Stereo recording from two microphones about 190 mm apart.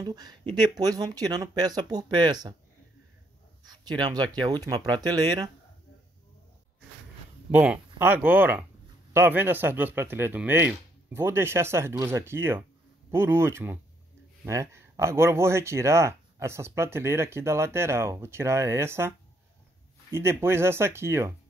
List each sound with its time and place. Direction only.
0.0 s speech: 20° right (ahead or behind)
3.6 s speech: 20° right (ahead or behind)
7.5 s speech: 10° right (ahead or behind)